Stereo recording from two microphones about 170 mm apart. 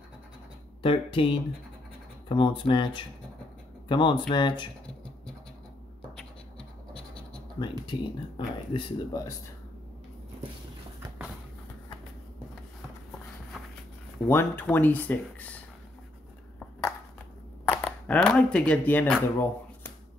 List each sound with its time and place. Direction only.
0.8 s speech: 30° left (ahead or behind)
6.9 s scratch: 30° left (ahead or behind)
7.9 s speech: 30° left (ahead or behind)
14.3 s speech: 10° left (ahead or behind)
17.6 s speech: 10° left (ahead or behind)